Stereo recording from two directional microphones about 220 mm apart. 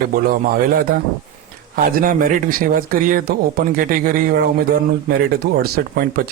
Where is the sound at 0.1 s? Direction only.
40° right (ahead or behind).